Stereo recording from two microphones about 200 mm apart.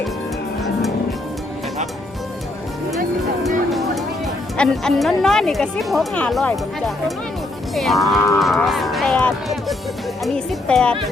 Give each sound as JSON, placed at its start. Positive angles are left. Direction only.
{"t": 3.7, "sound": "music", "side_deg": 0}
{"t": 4.5, "sound": "a woman's voice", "side_deg": 5}